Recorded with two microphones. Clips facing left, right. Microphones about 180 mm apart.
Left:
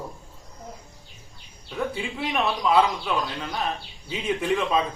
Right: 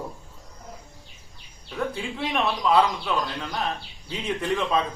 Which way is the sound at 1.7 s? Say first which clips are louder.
Even; 5° left (ahead or behind).